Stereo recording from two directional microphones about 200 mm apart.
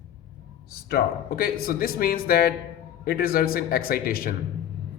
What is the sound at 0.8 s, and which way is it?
A man's voice, 50° left (ahead or behind).